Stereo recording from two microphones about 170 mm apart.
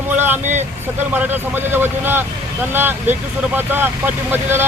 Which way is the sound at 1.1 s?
10° right (ahead or behind).